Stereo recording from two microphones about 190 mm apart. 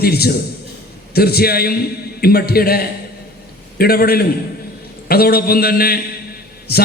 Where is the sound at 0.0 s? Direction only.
55° left (ahead or behind).